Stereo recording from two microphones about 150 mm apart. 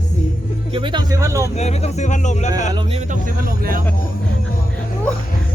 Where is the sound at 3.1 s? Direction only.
70° right (ahead or behind).